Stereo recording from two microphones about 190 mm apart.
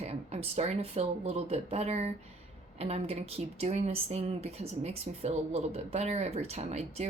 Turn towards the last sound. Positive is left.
turn(degrees=-35)  # may be behind; listen again after turning